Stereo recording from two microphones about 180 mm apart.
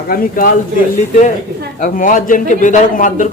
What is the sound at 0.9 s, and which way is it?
Speech, 40° left (ahead or behind).